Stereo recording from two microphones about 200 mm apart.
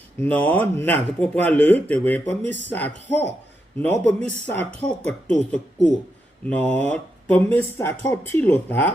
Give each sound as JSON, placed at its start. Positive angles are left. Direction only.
{"t": 0.2, "sound": "speech", "side_deg": 10}
{"t": 4.8, "sound": "speech", "side_deg": 20}
{"t": 6.5, "sound": "speech", "side_deg": 5}